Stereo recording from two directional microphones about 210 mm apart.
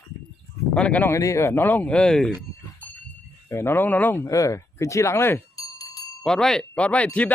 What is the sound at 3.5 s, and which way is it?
Speech, 10° left (ahead or behind).